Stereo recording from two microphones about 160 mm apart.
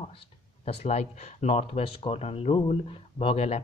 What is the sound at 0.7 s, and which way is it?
Speech, 45° left (ahead or behind).